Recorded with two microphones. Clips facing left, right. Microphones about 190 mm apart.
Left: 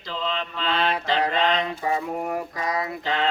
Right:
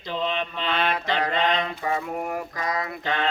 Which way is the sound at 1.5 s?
20° left (ahead or behind).